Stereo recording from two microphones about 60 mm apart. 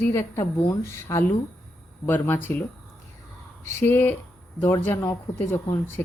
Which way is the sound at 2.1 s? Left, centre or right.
Left.